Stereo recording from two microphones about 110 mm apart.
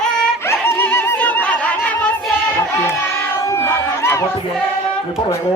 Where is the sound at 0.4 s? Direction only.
25° left (ahead or behind).